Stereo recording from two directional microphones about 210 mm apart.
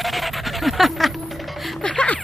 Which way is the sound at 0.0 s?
Centre (ahead or behind).